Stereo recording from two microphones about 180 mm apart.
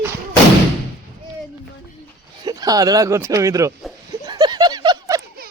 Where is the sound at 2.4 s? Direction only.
20° right (ahead or behind).